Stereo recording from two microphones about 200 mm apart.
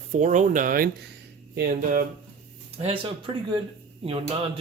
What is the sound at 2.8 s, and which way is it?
Speech, 30° right (ahead or behind).